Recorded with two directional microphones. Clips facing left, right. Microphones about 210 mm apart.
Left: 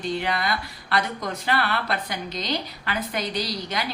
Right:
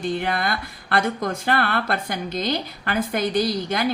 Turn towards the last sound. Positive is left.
turn(degrees=-50)  # may be behind; listen again after turning